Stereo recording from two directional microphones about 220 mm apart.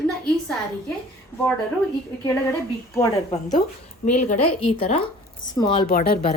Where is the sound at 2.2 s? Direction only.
10° left (ahead or behind).